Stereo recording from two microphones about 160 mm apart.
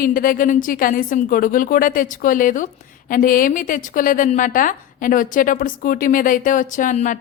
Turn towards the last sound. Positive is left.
turn(degrees=55)  # may be behind; listen again after turning